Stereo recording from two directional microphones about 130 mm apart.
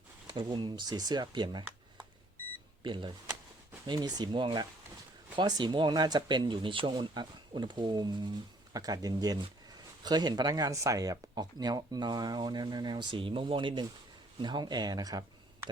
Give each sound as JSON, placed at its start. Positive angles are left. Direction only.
{"t": 0.3, "sound": "speech", "side_deg": -35}